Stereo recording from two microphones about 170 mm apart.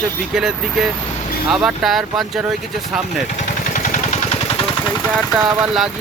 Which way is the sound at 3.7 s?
45° left (ahead or behind).